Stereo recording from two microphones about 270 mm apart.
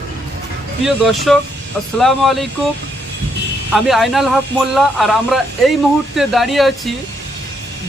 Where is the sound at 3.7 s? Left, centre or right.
Centre.